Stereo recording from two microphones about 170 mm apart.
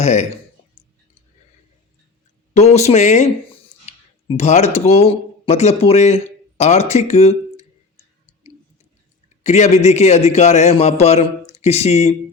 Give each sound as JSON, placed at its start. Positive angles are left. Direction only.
{"t": 0.0, "sound": "speech", "side_deg": 45}
{"t": 2.5, "sound": "speech", "side_deg": 40}
{"t": 9.4, "sound": "a man's voice", "side_deg": 40}